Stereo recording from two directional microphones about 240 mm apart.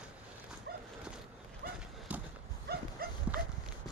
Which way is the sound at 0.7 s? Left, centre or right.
Right.